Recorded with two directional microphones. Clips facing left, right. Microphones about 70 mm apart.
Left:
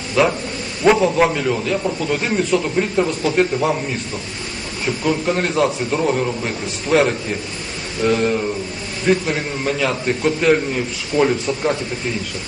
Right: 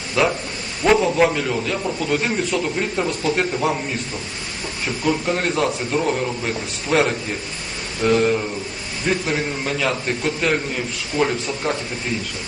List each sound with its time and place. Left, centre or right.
0.2 s a man's voice: centre
5.0 s a man's voice: centre